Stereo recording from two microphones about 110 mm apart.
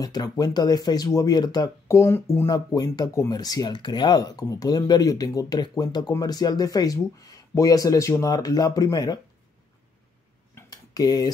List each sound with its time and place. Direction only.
0.0 s speech: 40° left (ahead or behind)
1.9 s speech: 25° left (ahead or behind)
2.5 s speech: 35° left (ahead or behind)
10.7 s tick-tock: 35° left (ahead or behind)